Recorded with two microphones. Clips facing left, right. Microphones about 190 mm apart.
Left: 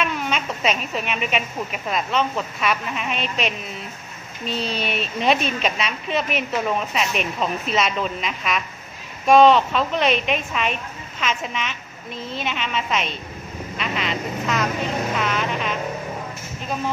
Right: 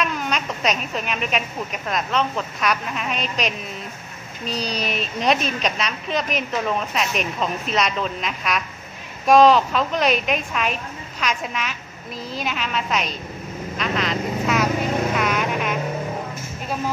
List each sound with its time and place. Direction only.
0.0 s a woman's voice: centre (ahead or behind)
13.7 s vehicle: centre (ahead or behind)
15.1 s music: 5° right (ahead or behind)